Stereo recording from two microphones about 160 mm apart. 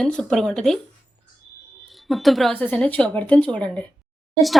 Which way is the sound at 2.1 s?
Centre (ahead or behind).